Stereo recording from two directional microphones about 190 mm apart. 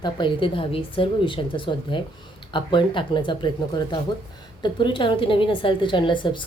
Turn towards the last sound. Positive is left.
turn(degrees=25)  # may be behind; listen again after turning